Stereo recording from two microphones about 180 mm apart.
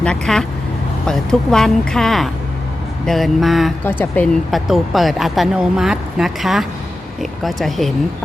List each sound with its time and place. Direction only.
0.0 s speech: 5° left (ahead or behind)
3.8 s speech: 10° left (ahead or behind)